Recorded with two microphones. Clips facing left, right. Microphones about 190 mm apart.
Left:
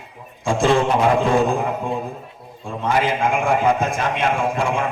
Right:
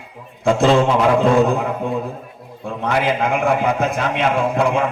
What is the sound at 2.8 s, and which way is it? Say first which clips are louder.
A man's voice: right 1 dB; 65° right (ahead or behind).